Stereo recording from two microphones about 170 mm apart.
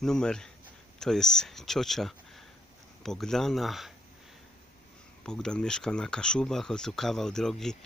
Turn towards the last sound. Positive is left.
turn(degrees=5)  # may be behind; listen again after turning